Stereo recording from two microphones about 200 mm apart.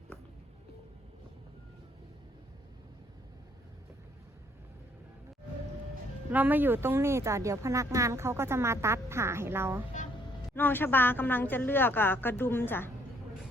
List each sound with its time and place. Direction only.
6.3 s speech: 10° right (ahead or behind)
10.5 s speech: 10° left (ahead or behind)